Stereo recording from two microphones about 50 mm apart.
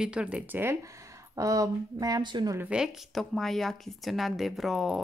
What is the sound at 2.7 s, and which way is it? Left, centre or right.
Speech, right.